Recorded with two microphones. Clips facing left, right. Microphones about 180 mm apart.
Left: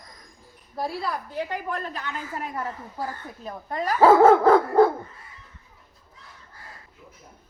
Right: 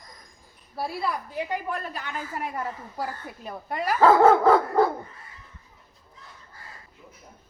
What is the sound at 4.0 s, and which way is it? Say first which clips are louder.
Dog: left 2 dB; centre (ahead or behind).